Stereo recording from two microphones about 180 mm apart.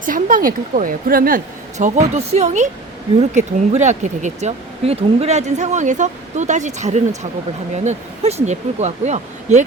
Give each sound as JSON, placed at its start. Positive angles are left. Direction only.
{"t": 0.0, "sound": "a woman's voice", "side_deg": -50}
{"t": 1.8, "sound": "speech", "side_deg": -40}